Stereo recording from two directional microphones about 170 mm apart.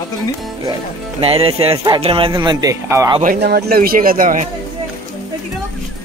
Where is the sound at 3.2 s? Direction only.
65° right (ahead or behind).